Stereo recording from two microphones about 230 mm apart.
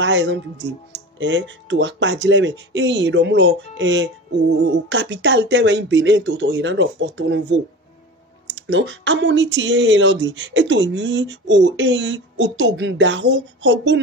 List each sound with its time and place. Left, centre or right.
0.0 s speech: right